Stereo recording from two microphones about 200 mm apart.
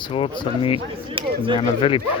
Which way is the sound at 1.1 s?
25° right (ahead or behind).